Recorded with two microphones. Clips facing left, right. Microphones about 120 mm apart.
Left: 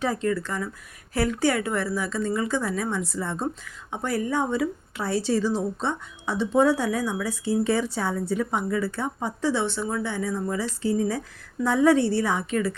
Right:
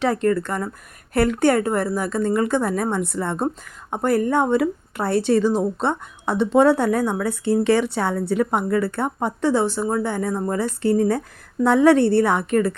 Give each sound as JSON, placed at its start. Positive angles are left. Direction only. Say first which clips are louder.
{"t": 0.0, "sound": "speech", "louder": "right 6 dB", "side_deg": -60}
{"t": 11.6, "sound": "speech", "louder": "right 5 dB", "side_deg": -70}